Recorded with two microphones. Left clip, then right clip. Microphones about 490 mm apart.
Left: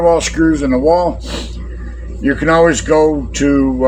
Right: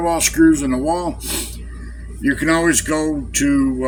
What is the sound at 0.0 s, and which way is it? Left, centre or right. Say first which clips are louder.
Speech: left 3 dB; right.